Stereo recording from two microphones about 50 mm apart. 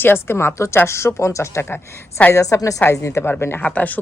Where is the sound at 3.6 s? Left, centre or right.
Left.